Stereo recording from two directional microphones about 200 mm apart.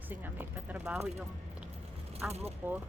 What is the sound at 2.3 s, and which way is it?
Speech, 30° right (ahead or behind).